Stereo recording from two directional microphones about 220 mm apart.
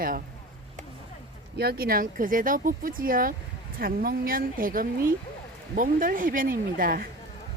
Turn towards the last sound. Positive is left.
turn(degrees=-40)  # may be behind; listen again after turning